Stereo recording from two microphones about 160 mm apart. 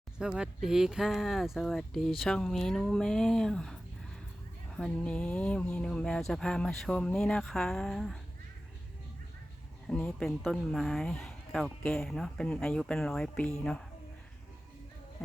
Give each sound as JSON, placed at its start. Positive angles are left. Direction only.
{"t": 0.2, "sound": "speech", "side_deg": -5}
{"t": 4.8, "sound": "speech", "side_deg": 5}
{"t": 9.8, "sound": "speech", "side_deg": 5}